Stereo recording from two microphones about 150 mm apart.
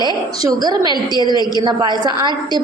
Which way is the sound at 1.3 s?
30° left (ahead or behind).